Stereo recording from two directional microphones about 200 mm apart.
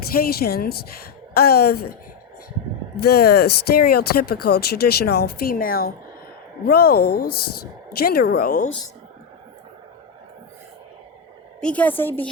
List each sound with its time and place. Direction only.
0.1 s speech: 50° left (ahead or behind)
3.0 s speech: 50° left (ahead or behind)
11.6 s a woman's voice: 5° left (ahead or behind)